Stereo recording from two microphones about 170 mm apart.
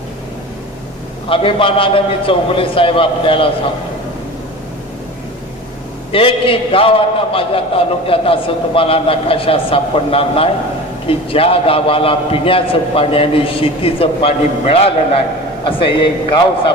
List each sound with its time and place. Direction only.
1.3 s a man's voice: 30° left (ahead or behind)
6.1 s a man's voice: 30° left (ahead or behind)